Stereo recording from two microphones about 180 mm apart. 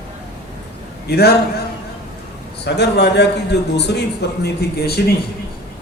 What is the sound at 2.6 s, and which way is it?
A man's voice, 70° left (ahead or behind).